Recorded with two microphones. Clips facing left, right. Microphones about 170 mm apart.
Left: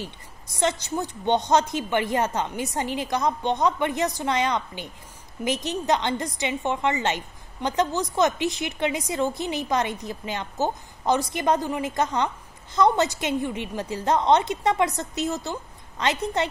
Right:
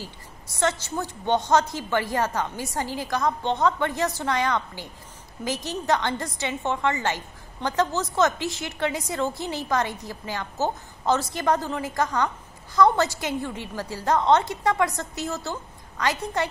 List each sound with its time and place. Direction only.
0.6 s a woman's voice: 15° left (ahead or behind)